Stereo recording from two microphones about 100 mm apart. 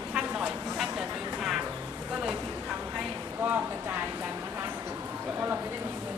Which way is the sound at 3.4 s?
20° right (ahead or behind).